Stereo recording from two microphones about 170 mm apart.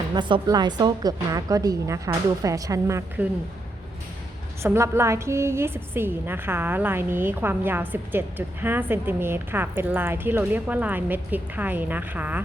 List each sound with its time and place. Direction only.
0.1 s a woman's voice: 25° right (ahead or behind)
4.6 s a woman's voice: 15° right (ahead or behind)